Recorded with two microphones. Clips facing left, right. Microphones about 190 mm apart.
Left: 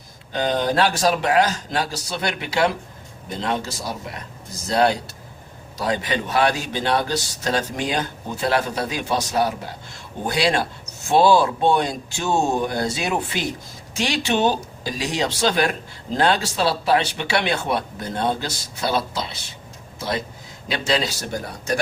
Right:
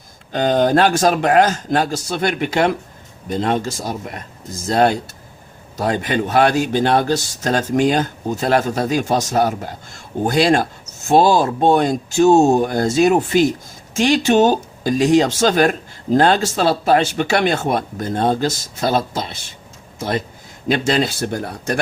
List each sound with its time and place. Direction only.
0.3 s speech: 45° right (ahead or behind)